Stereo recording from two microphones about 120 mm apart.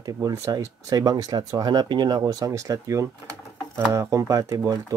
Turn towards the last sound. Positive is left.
turn(degrees=-30)  # may be behind; listen again after turning